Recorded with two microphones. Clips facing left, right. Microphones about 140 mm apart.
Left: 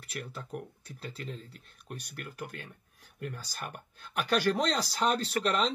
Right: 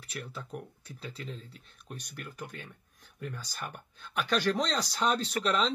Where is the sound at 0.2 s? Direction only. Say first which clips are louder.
Left 1 dB; centre (ahead or behind).